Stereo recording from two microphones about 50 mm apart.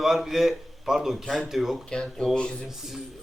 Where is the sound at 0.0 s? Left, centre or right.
Centre.